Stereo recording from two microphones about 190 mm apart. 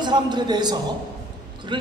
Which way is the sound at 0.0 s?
20° right (ahead or behind).